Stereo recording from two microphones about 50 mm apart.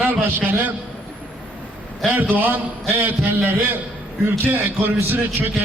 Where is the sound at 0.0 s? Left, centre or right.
Right.